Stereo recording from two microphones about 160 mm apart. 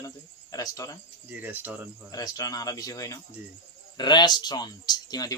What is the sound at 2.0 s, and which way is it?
Speech, 25° left (ahead or behind).